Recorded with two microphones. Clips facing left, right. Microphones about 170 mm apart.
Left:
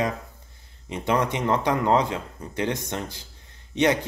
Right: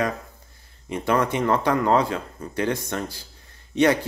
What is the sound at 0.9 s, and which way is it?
Speech, 20° left (ahead or behind).